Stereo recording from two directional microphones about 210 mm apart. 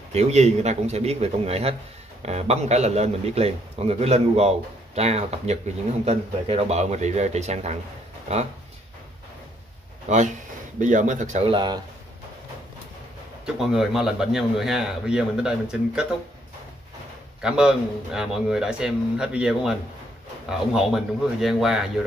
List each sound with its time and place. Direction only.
0.1 s a man's voice: 30° right (ahead or behind)
10.0 s speech: 35° right (ahead or behind)
13.6 s a man's voice: centre (ahead or behind)
17.4 s a man's voice: 5° right (ahead or behind)